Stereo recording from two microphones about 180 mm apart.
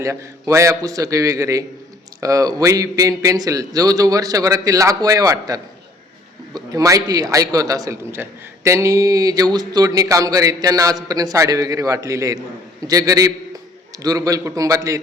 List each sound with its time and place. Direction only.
0.0 s a man's voice: 15° right (ahead or behind)